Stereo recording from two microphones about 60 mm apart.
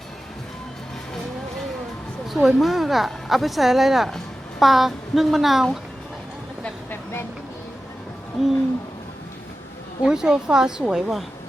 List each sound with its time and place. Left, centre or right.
2.3 s speech: centre
6.9 s vehicle: left
8.4 s speech: centre
10.0 s speech: centre